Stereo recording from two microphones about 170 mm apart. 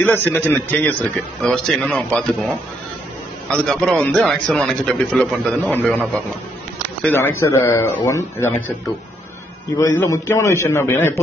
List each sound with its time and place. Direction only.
0.0 s a man's voice: 10° left (ahead or behind)
3.4 s a man's voice: 5° left (ahead or behind)
9.8 s a man's voice: 20° left (ahead or behind)